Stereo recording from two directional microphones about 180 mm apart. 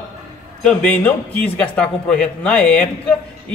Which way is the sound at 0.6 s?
5° left (ahead or behind).